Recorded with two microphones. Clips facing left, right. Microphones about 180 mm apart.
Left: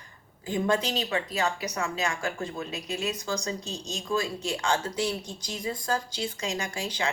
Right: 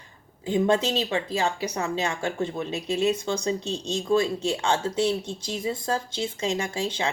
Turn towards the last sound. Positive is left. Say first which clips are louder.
# right 4 dB
turn(degrees=-25)  # may be behind; listen again after turning